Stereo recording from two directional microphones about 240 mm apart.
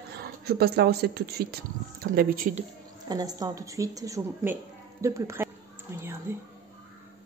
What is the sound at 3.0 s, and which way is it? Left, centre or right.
A woman's voice, centre.